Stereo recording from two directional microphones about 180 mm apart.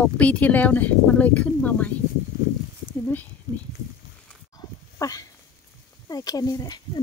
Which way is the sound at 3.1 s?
10° left (ahead or behind).